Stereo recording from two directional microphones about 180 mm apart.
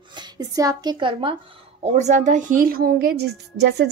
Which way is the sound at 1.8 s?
40° right (ahead or behind).